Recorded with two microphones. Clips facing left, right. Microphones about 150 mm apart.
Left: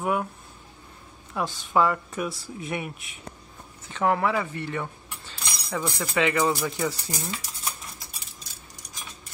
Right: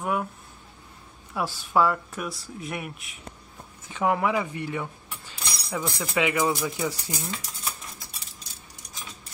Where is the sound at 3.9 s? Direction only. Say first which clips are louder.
Even; 15° right (ahead or behind).